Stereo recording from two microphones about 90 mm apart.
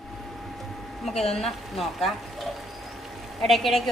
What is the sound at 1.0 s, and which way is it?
Speech, centre (ahead or behind).